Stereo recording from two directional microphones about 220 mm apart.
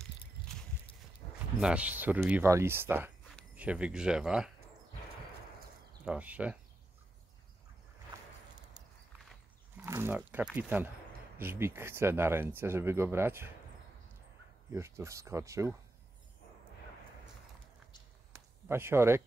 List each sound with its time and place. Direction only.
0.5 s a sound: centre (ahead or behind)
1.6 s speech: 5° right (ahead or behind)
6.0 s speech: 5° right (ahead or behind)
9.8 s speech: 10° right (ahead or behind)
14.7 s speech: 10° right (ahead or behind)
18.3 s a sound: 10° right (ahead or behind)